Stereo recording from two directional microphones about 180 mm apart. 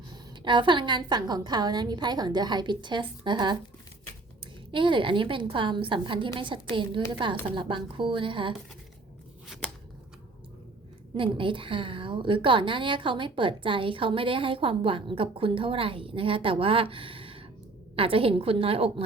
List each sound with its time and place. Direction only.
0.1 s a woman's voice: 25° right (ahead or behind)
4.7 s a woman's voice: 30° right (ahead or behind)
11.1 s a woman's voice: 30° right (ahead or behind)